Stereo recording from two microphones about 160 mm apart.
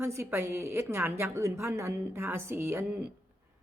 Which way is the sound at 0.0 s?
15° right (ahead or behind).